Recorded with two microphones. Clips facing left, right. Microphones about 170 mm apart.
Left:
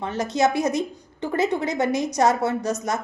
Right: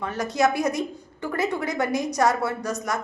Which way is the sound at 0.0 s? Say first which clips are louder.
Left 1 dB; 25° left (ahead or behind).